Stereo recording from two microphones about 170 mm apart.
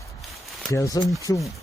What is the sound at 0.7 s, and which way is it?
Speech, 20° left (ahead or behind).